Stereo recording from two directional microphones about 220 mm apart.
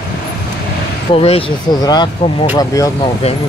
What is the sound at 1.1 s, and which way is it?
Speech, 25° left (ahead or behind).